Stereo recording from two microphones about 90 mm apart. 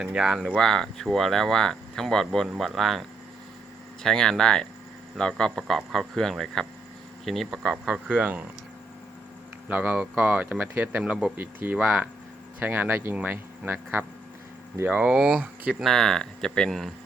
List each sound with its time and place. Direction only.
0.0 s speech: 10° right (ahead or behind)
0.5 s speech: 5° left (ahead or behind)
4.0 s speech: 5° left (ahead or behind); by 8.4 s 15° right (ahead or behind)
9.6 s speech: 15° right (ahead or behind)
11.3 s speech: 20° right (ahead or behind)
14.8 s speech: 10° right (ahead or behind)
15.8 s speech: 5° left (ahead or behind)